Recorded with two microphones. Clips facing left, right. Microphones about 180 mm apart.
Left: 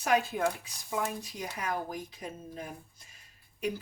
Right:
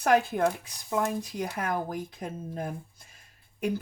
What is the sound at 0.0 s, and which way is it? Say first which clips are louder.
Speech: right 4 dB; 55° right (ahead or behind).